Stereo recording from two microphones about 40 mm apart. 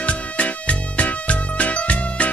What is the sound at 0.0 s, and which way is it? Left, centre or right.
Music, left.